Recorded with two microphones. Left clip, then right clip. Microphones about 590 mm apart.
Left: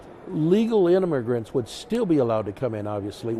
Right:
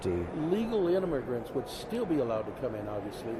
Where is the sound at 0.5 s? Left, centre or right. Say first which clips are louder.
Left 9 dB; left.